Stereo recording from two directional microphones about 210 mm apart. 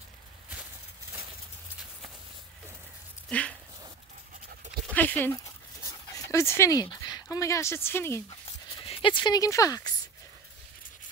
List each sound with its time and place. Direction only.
3.3 s a sound: 5° left (ahead or behind)
4.9 s speech: 10° left (ahead or behind)
8.7 s speech: 25° left (ahead or behind)